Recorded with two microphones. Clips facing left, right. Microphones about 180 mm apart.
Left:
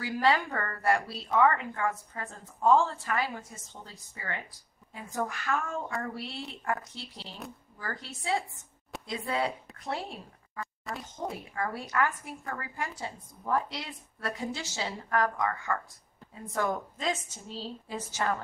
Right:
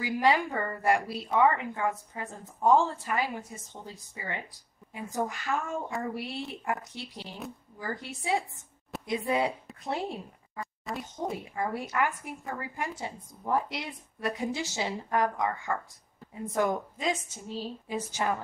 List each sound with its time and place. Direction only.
0.0 s a woman's voice: 15° right (ahead or behind)
10.9 s a woman's voice: centre (ahead or behind)
11.5 s a woman's voice: 20° right (ahead or behind)